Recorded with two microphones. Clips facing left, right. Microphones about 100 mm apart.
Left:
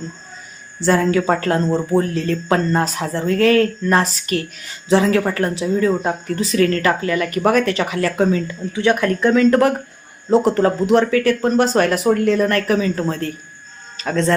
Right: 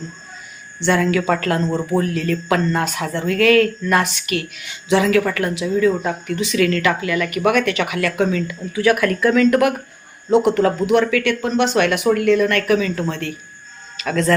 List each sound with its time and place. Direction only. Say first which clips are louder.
0.8 s speech: left 1 dB; 35° left (ahead or behind)